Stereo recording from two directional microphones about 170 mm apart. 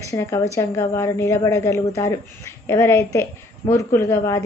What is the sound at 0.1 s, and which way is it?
Speech, 15° left (ahead or behind).